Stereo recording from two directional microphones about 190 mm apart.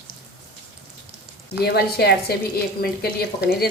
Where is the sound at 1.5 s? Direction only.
55° left (ahead or behind).